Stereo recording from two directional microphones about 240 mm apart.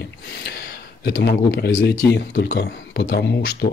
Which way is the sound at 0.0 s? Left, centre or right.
Left.